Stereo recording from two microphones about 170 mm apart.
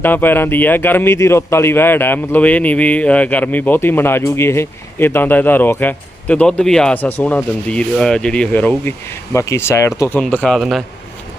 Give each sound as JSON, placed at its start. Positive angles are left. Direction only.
{"t": 0.0, "sound": "speech", "side_deg": 10}